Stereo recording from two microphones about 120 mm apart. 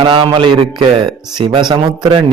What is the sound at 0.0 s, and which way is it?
A man's voice, 45° right (ahead or behind).